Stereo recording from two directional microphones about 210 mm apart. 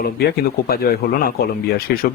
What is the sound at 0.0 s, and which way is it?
Speech, 50° left (ahead or behind).